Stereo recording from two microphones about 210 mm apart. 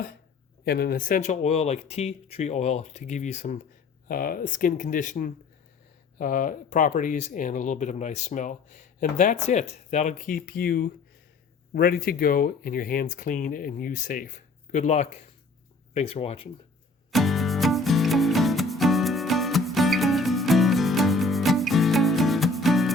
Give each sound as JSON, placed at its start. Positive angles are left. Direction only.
{"t": 0.6, "sound": "speech", "side_deg": 50}
{"t": 17.1, "sound": "music", "side_deg": 0}